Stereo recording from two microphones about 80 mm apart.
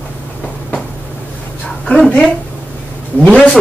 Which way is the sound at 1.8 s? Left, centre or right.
Centre.